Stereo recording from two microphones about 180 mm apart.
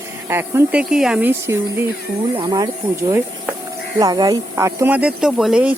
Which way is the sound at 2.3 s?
25° right (ahead or behind).